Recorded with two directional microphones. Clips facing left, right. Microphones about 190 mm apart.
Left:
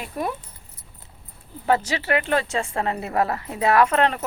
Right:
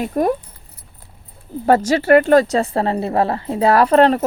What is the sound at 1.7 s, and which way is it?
Speech, 45° right (ahead or behind).